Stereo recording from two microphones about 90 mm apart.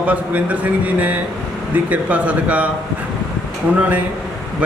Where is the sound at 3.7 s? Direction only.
20° right (ahead or behind).